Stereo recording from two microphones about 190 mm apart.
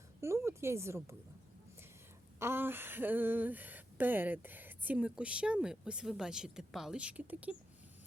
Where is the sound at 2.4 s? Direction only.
10° right (ahead or behind).